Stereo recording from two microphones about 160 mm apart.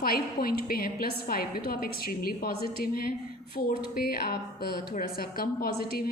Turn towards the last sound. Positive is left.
turn(degrees=70)  # may be behind; listen again after turning